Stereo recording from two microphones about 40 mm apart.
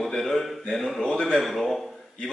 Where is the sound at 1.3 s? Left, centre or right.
Centre.